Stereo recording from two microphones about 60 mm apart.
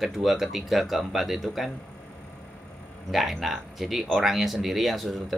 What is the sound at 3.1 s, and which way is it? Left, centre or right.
Speech, centre.